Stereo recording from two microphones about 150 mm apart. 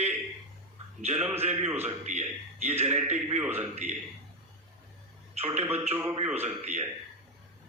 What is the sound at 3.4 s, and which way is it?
Speech, 15° right (ahead or behind).